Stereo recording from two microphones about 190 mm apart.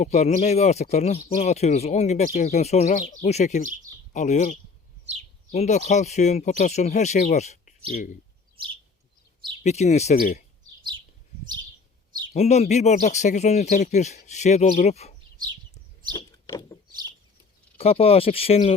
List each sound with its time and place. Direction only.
0.0 s speech: 35° left (ahead or behind)
9.6 s speech: 35° left (ahead or behind)
12.3 s speech: 35° left (ahead or behind)
16.1 s chirp: 20° left (ahead or behind)
17.7 s speech: 30° left (ahead or behind)